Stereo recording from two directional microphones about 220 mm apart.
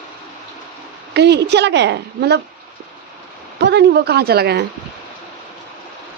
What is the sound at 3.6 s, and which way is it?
A woman's voice, 50° right (ahead or behind).